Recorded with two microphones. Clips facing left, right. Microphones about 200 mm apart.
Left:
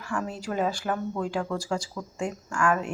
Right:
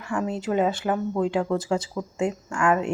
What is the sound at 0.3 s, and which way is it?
Speech, 20° right (ahead or behind).